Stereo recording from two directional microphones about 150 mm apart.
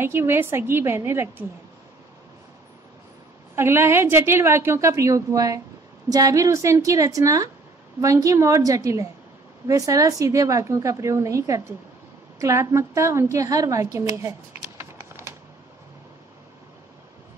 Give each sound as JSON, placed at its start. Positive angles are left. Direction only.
{"t": 0.0, "sound": "a woman's voice", "side_deg": -15}
{"t": 3.5, "sound": "a woman's voice", "side_deg": -15}
{"t": 14.8, "sound": "a sound", "side_deg": -15}